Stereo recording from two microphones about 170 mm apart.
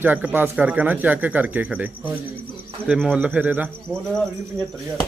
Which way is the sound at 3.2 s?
10° right (ahead or behind).